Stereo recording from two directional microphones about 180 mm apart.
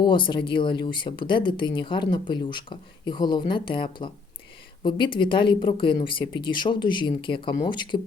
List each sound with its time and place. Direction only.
0.0 s speech: 25° left (ahead or behind)